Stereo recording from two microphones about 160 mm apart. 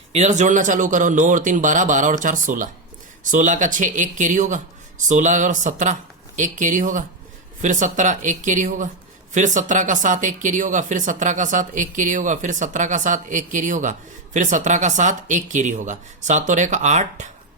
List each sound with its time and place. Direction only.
0.1 s speech: 45° right (ahead or behind)